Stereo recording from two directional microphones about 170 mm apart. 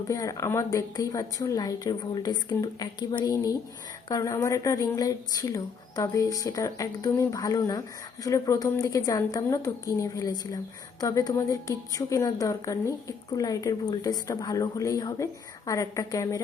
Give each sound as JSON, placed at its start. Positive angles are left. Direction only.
{"t": 0.1, "sound": "a woman's voice", "side_deg": 20}